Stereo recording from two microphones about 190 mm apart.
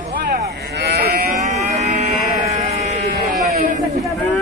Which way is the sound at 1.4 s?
35° right (ahead or behind).